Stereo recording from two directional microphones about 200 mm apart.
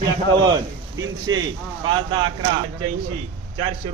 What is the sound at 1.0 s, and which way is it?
Speech, 80° right.